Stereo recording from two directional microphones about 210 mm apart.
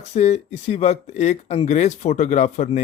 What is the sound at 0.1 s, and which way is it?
Speech, 35° left (ahead or behind).